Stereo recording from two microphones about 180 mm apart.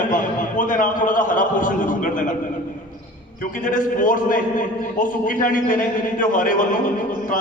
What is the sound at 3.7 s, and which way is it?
A man's voice, 45° left (ahead or behind).